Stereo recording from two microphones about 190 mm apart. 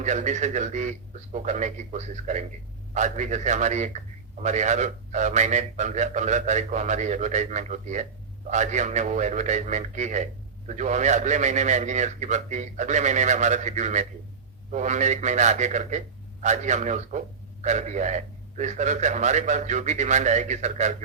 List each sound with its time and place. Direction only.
0.0 s a man's voice: 40° right (ahead or behind)